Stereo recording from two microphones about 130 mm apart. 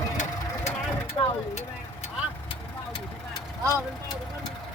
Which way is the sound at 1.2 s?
35° left (ahead or behind).